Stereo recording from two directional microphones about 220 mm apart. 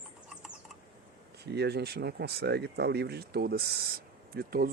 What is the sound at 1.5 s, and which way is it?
Speech, 45° right (ahead or behind).